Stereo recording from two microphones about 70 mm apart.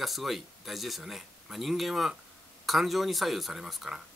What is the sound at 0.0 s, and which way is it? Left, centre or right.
Speech, centre.